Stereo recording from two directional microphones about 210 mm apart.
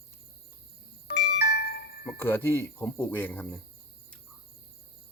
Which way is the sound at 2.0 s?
10° left (ahead or behind).